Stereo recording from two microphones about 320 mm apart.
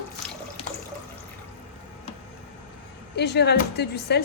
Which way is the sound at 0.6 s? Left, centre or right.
Centre.